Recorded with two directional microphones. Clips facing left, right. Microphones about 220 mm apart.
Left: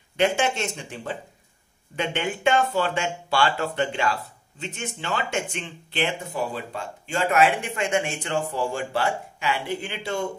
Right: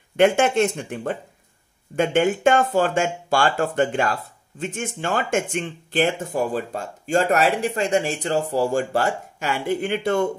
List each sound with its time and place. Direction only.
0.2 s speech: 55° right (ahead or behind)